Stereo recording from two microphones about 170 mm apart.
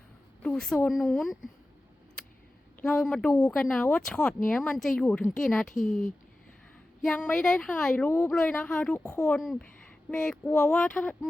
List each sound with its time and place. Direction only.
0.4 s speech: 5° left (ahead or behind)
2.8 s a woman's voice: 5° left (ahead or behind)
5.7 s speech: 50° left (ahead or behind)
7.0 s a woman's voice: 10° left (ahead or behind)
9.4 s a woman's voice: centre (ahead or behind)